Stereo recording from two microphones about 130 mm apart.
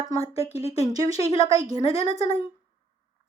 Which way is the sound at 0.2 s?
50° left (ahead or behind).